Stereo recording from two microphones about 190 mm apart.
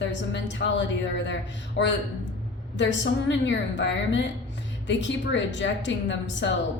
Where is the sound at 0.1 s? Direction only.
70° left (ahead or behind).